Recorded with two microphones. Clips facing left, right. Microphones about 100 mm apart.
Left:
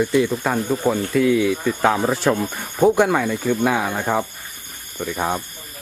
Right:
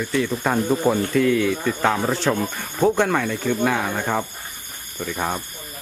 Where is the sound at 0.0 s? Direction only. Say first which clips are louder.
Left 5 dB; 15° left (ahead or behind).